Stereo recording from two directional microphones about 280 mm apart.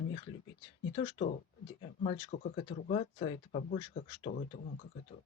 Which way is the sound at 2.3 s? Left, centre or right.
Left.